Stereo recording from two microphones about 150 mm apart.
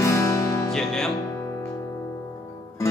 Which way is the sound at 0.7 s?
5° left (ahead or behind).